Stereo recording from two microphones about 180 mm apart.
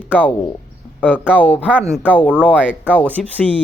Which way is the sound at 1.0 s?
10° left (ahead or behind).